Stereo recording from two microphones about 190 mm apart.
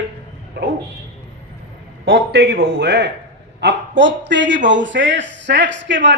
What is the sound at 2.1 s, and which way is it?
A man's voice, 65° right (ahead or behind).